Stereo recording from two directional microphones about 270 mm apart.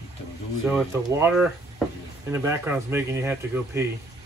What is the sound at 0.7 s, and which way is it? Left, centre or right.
Speech, centre.